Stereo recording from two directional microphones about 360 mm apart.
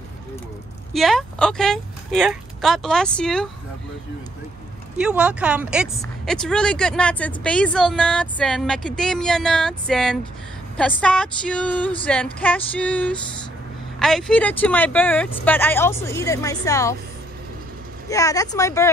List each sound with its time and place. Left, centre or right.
0.9 s speech: centre
4.9 s speech: centre
18.0 s speech: centre